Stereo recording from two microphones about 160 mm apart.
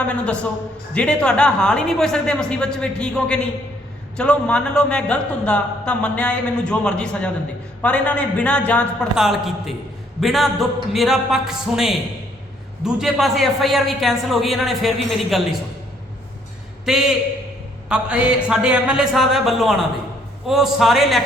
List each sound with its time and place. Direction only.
0.0 s a man's voice: 10° left (ahead or behind)
9.1 s a woman's voice: centre (ahead or behind)
16.8 s a woman's voice: 5° right (ahead or behind)